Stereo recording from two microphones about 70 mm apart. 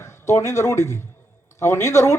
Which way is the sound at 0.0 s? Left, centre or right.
Left.